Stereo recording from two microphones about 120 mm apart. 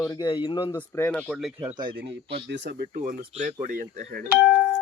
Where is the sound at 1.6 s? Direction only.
40° right (ahead or behind).